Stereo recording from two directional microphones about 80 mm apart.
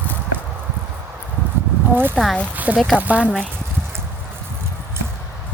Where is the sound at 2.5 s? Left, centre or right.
Centre.